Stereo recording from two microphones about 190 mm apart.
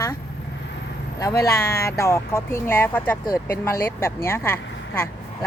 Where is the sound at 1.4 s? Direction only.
15° left (ahead or behind).